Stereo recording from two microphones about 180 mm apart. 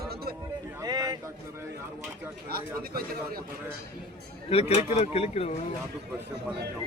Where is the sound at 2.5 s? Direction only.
55° right (ahead or behind).